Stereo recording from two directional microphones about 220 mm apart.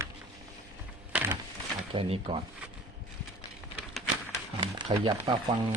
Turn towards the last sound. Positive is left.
turn(degrees=-20)  # may be behind; listen again after turning